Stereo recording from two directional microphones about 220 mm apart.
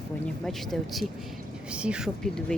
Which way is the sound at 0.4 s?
Centre (ahead or behind).